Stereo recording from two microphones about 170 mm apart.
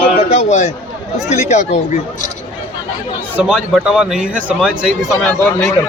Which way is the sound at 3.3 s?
5° right (ahead or behind).